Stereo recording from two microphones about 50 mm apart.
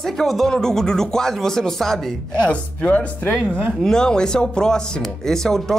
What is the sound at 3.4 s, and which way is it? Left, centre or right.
Speech, right.